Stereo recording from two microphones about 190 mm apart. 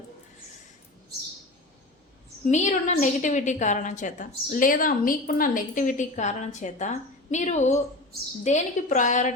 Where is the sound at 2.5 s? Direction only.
40° left (ahead or behind).